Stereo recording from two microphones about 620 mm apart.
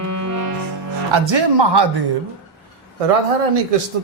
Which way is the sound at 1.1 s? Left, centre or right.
Right.